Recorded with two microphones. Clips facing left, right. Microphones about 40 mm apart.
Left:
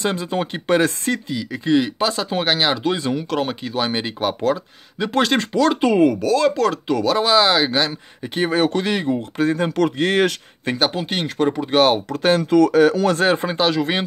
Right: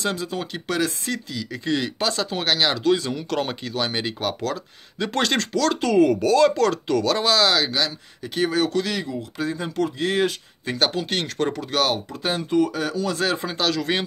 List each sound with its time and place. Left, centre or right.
0.0 s speech: left
1.3 s speech: centre
5.5 s speech: left
6.0 s speech: centre
7.3 s speech: left
10.8 s speech: centre
11.6 s speech: left
12.1 s speech: left
12.4 s speech: left
12.7 s speech: left
13.2 s speech: left
13.6 s speech: left